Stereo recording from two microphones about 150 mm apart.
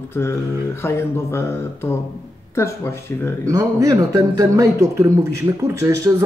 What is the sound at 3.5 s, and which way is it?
Speech, 20° right (ahead or behind).